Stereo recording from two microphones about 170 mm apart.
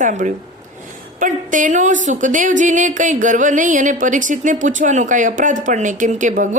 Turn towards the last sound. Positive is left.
turn(degrees=-50)  # may be behind; listen again after turning